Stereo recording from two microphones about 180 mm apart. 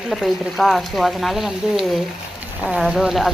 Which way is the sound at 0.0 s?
Centre (ahead or behind).